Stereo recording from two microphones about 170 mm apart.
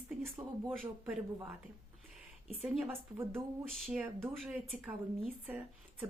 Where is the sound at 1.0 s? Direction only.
10° right (ahead or behind).